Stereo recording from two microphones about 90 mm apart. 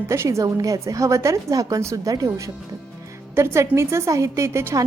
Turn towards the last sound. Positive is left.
turn(degrees=-30)  # may be behind; listen again after turning